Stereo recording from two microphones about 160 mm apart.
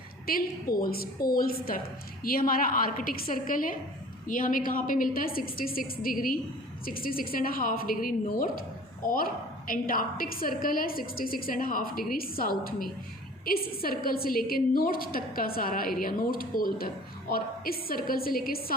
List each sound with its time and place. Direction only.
0.3 s a woman's voice: 65° left (ahead or behind)